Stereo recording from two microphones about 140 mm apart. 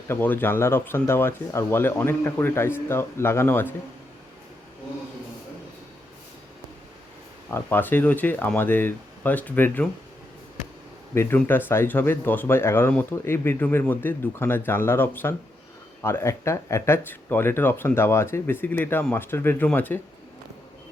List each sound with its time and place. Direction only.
0.1 s speech: 15° left (ahead or behind)
7.5 s speech: 15° left (ahead or behind)
11.1 s speech: 20° left (ahead or behind)